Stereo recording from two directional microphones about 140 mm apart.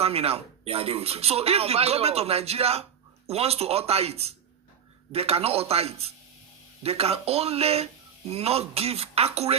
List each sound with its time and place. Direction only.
0.0 s speech: 45° right (ahead or behind)